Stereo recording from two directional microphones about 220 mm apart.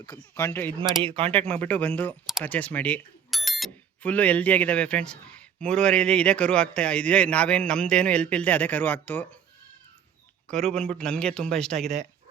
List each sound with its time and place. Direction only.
0.3 s speech: 10° left (ahead or behind)
1.0 s speech: 25° right (ahead or behind)
1.3 s speech: 5° left (ahead or behind)
10.5 s speech: 5° left (ahead or behind)